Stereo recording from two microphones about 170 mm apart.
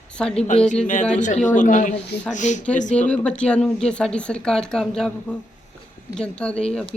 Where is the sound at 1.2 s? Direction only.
45° left (ahead or behind).